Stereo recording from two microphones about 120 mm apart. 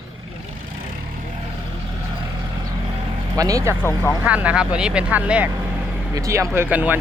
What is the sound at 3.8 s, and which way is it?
Speech, 20° left (ahead or behind).